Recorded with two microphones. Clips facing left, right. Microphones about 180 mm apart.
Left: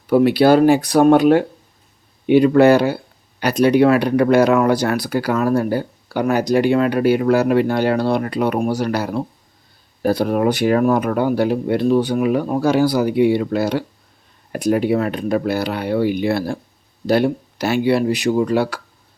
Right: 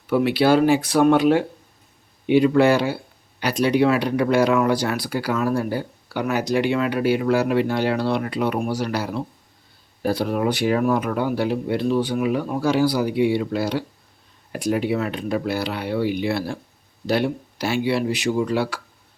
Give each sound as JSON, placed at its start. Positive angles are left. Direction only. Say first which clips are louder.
{"t": 0.1, "sound": "speech", "louder": "left 5 dB", "side_deg": 40}